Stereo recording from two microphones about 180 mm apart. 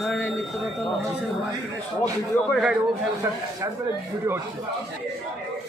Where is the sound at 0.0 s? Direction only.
Centre (ahead or behind).